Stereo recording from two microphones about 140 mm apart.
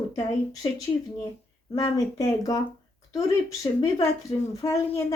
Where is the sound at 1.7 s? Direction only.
25° left (ahead or behind).